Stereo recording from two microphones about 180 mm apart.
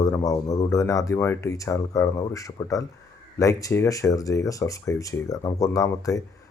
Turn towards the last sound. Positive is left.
turn(degrees=20)  # may be behind; listen again after turning